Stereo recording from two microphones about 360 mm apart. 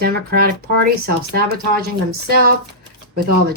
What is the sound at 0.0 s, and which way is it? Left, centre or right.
Speech, right.